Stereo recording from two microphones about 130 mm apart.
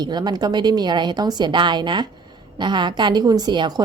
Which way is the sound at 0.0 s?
35° right (ahead or behind).